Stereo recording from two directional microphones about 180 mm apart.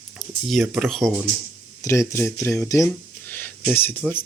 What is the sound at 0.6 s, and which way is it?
Speech, 5° right (ahead or behind).